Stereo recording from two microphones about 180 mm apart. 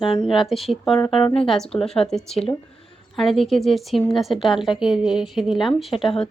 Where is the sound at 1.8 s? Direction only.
5° left (ahead or behind).